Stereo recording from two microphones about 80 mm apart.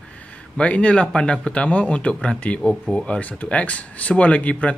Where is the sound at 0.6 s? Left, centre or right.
Centre.